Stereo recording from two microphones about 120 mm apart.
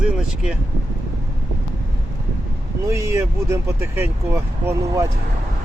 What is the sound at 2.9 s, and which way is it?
Speech, 25° right (ahead or behind).